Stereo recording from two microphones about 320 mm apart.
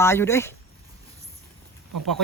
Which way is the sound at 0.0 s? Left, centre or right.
Centre.